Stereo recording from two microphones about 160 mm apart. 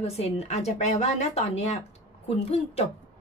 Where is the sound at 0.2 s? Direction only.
40° left (ahead or behind).